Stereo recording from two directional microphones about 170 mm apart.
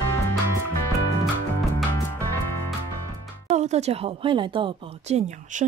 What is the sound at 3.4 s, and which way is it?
Speech, 40° right (ahead or behind).